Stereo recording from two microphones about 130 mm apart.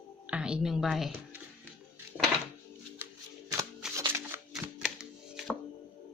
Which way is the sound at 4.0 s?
20° right (ahead or behind).